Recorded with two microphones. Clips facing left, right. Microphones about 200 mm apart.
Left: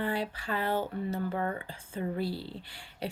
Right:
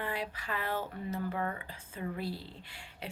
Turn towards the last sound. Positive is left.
turn(degrees=35)  # may be behind; listen again after turning